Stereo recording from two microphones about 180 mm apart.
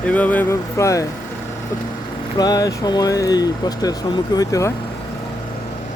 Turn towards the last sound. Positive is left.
turn(degrees=20)  # may be behind; listen again after turning